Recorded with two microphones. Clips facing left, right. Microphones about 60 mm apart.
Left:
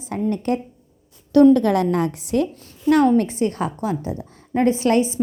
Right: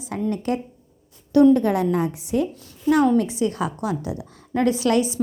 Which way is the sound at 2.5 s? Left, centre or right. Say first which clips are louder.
Left 2 dB; left.